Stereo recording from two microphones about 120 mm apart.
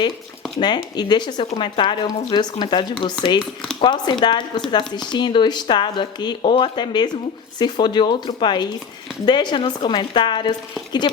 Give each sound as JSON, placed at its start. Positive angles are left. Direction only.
{"t": 0.6, "sound": "speech", "side_deg": 35}